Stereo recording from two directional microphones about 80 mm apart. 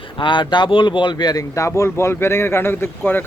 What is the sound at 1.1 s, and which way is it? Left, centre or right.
Speech, left.